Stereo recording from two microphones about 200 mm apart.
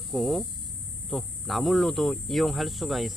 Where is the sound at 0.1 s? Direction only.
Centre (ahead or behind).